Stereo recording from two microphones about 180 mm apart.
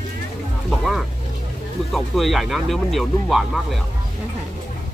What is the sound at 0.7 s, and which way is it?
Music, centre (ahead or behind).